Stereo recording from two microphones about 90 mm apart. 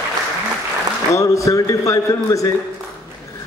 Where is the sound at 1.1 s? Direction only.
35° left (ahead or behind).